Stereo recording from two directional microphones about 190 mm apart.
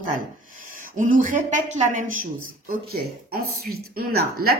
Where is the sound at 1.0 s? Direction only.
45° right (ahead or behind).